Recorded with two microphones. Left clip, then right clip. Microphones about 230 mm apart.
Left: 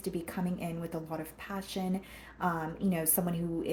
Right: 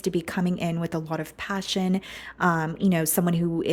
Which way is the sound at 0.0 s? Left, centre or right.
Right.